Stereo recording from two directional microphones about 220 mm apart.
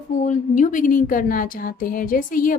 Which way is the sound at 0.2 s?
35° left (ahead or behind).